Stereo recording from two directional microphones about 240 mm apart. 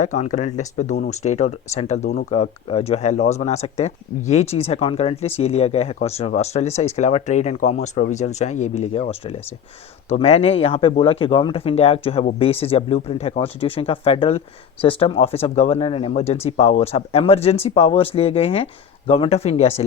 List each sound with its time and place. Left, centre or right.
0.0 s speech: left